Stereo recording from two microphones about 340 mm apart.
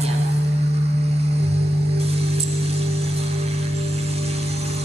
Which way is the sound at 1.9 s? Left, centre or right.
Centre.